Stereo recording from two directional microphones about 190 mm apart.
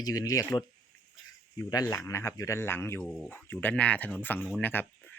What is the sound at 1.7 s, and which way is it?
Speech, 20° left (ahead or behind).